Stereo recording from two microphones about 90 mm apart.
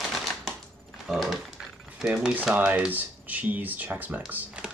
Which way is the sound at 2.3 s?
15° right (ahead or behind).